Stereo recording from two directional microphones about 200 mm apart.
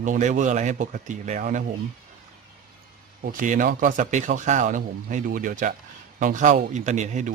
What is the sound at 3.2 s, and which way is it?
Speech, 40° right (ahead or behind).